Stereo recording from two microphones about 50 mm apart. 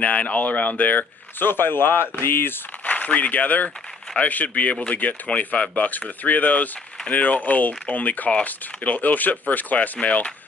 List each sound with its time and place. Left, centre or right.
0.0 s speech: left
2.8 s speech: left